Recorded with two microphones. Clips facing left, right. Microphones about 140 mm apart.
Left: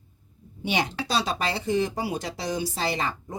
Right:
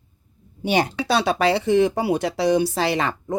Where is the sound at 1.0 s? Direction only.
65° right (ahead or behind).